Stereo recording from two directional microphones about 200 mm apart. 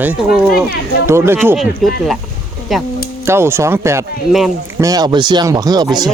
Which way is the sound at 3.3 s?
10° right (ahead or behind).